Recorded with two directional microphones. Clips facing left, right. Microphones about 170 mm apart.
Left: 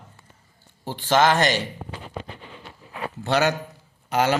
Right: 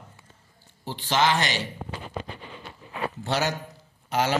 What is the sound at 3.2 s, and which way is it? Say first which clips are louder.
Speech: left 6 dB; 65° left (ahead or behind).